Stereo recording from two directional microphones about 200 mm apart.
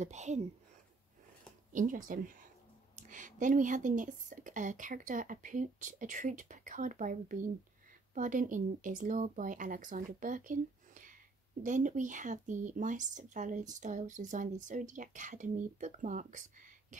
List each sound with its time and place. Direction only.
0.0 s speech: 35° right (ahead or behind)
1.7 s speech: 40° right (ahead or behind)